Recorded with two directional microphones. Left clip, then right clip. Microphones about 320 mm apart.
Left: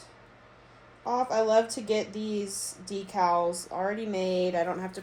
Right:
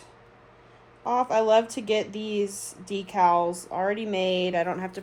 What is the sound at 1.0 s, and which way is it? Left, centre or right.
Speech, right.